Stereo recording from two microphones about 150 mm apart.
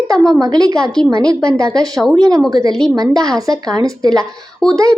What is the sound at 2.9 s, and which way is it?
Speech, 25° right (ahead or behind).